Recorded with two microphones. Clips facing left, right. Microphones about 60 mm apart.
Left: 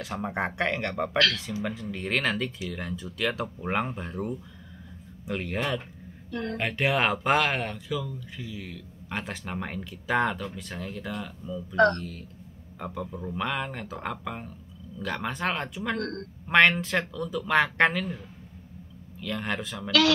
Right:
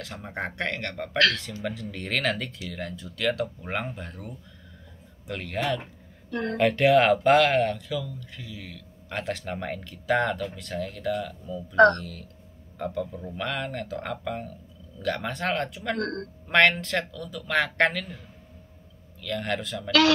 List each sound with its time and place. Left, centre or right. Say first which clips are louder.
0.0 s speech: left 4 dB; centre
16.0 s speech: right 3 dB; right
16.4 s speech: even; centre
19.2 s speech: right 2 dB; centre